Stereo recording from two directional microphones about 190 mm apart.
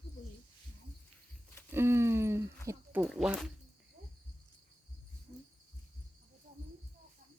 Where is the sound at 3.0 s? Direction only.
Centre (ahead or behind).